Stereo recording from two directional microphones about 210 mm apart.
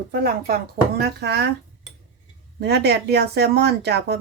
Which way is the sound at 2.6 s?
50° right (ahead or behind).